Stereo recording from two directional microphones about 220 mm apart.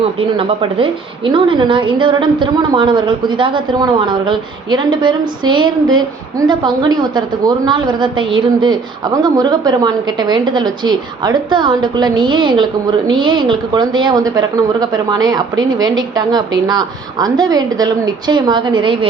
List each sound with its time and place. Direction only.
0.2 s a woman's voice: 25° right (ahead or behind)